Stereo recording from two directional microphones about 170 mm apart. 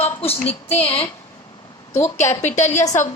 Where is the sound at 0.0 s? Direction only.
35° left (ahead or behind).